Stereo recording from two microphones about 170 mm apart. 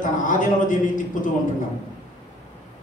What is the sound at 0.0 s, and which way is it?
A man's voice, 50° left (ahead or behind).